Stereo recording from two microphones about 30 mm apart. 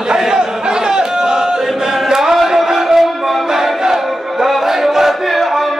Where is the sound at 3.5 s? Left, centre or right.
Centre.